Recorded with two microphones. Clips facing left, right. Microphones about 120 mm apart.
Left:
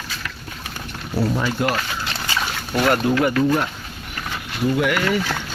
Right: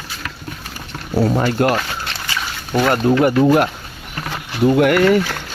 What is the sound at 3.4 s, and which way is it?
Speech, 60° right (ahead or behind).